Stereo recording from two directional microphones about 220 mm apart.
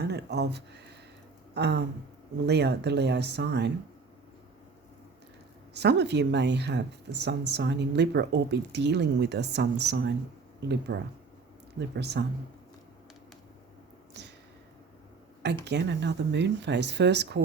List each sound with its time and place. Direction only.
0.0 s speech: 50° right (ahead or behind)
5.7 s speech: 50° right (ahead or behind)
14.1 s a sound: 50° right (ahead or behind)
15.6 s speech: 50° right (ahead or behind)